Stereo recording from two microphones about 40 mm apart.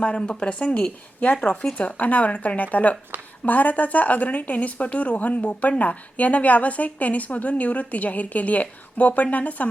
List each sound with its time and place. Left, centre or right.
0.0 s speech: left
1.5 s a woman's voice: left